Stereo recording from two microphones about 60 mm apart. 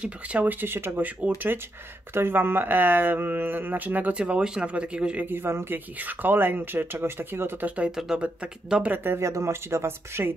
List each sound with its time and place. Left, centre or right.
0.0 s speech: right
5.2 s speech: right
7.6 s speech: right
7.9 s speech: centre
8.2 s speech: centre
8.9 s speech: right
9.2 s speech: right